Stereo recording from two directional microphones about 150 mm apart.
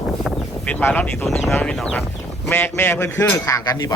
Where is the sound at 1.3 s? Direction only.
5° left (ahead or behind).